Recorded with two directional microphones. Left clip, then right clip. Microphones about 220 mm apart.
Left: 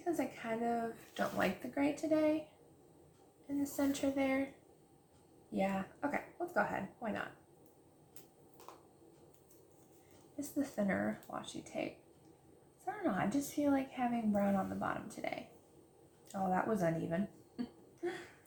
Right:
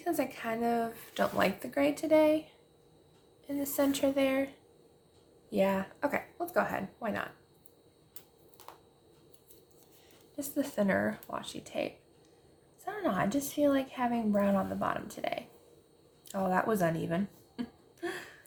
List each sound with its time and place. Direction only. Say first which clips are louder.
0.0 s speech: right 5 dB; 45° right (ahead or behind)
3.6 s speech: right 7 dB; 45° right (ahead or behind)
5.5 s speech: right 8 dB; 45° right (ahead or behind)
10.5 s speech: right 7 dB; 45° right (ahead or behind)
16.3 s speech: right 5 dB; 45° right (ahead or behind)
18.0 s a sound: right 3 dB; 45° right (ahead or behind)